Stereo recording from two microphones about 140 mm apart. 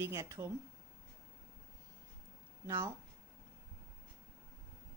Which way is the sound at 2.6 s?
20° right (ahead or behind).